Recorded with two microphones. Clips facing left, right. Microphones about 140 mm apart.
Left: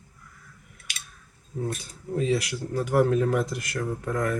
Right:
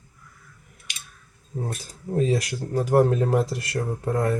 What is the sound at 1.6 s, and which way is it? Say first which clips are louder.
Speech: left 3 dB; 40° right (ahead or behind).